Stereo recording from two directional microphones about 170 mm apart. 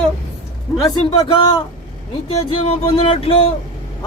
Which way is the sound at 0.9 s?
25° left (ahead or behind).